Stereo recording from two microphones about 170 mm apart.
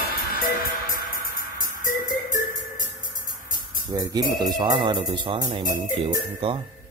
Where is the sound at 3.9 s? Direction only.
25° right (ahead or behind).